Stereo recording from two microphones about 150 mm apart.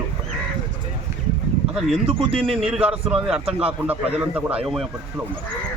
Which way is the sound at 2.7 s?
5° right (ahead or behind).